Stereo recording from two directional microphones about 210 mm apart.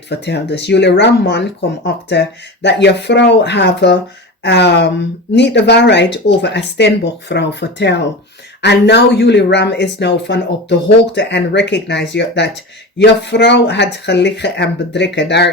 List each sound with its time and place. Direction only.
0.1 s speech: 55° left (ahead or behind)